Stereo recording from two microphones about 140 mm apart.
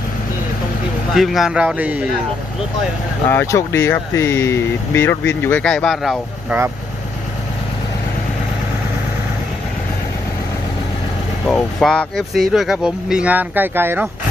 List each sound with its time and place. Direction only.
1.1 s speech: centre (ahead or behind)
3.2 s speech: 20° left (ahead or behind); by 6.1 s centre (ahead or behind)
11.4 s speech: 5° left (ahead or behind); by 14.1 s 15° right (ahead or behind)